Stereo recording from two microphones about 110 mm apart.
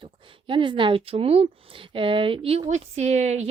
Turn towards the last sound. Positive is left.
turn(degrees=-90)